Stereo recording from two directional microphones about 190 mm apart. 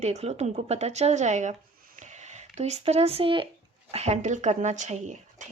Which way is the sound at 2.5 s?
35° right (ahead or behind).